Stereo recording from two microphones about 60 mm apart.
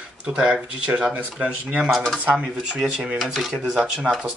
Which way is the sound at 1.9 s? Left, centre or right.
Centre.